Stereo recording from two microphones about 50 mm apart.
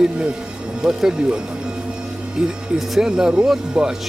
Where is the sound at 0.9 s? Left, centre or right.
Centre.